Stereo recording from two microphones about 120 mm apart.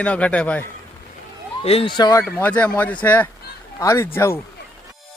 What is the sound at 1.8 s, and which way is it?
Speech, 35° left (ahead or behind).